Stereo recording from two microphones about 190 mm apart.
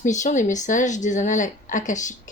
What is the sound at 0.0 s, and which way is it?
A woman's voice, 40° left (ahead or behind).